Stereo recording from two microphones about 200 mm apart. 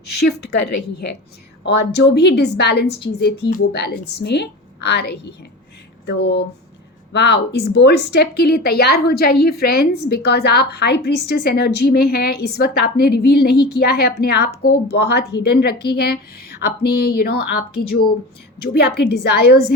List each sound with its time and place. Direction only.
1.6 s a woman's voice: 60° left (ahead or behind)